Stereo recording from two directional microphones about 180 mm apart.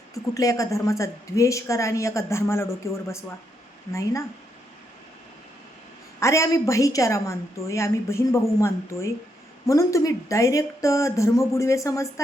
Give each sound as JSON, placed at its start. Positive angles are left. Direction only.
{"t": 0.1, "sound": "a woman's voice", "side_deg": 20}
{"t": 6.1, "sound": "a woman's voice", "side_deg": 15}